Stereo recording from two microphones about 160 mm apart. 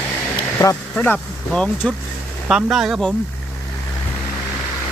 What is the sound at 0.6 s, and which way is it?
Speech, 10° left (ahead or behind).